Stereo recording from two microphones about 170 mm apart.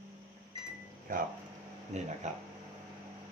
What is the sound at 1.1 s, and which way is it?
Speech, 55° right (ahead or behind).